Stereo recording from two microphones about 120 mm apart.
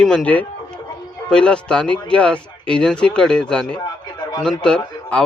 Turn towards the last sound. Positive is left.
turn(degrees=10)  # may be behind; listen again after turning